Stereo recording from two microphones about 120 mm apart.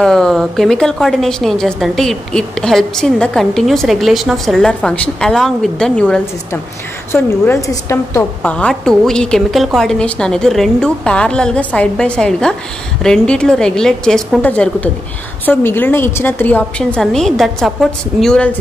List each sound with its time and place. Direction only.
0.0 s a woman's voice: 5° left (ahead or behind)
7.1 s a woman's voice: 20° left (ahead or behind)
8.4 s a woman's voice: 10° left (ahead or behind)